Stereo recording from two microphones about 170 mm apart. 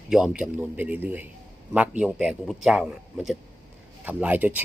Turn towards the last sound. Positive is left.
turn(degrees=-10)  # may be behind; listen again after turning